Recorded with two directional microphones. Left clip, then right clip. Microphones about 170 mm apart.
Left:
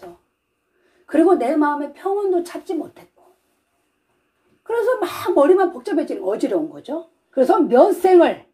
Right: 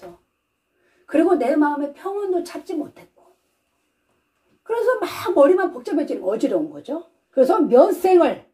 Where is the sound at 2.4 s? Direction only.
10° left (ahead or behind).